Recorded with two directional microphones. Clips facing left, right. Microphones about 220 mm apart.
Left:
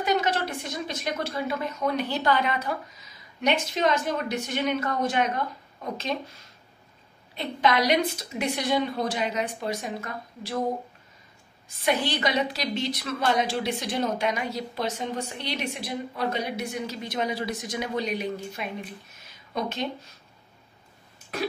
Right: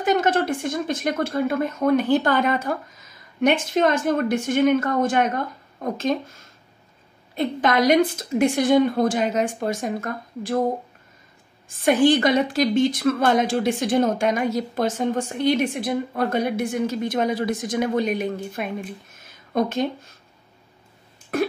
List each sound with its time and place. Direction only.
0.0 s a woman's voice: 50° right (ahead or behind)
11.7 s a woman's voice: 50° right (ahead or behind)
21.3 s a woman's voice: 50° right (ahead or behind)